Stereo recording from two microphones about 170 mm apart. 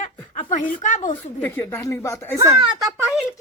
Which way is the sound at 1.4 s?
10° left (ahead or behind).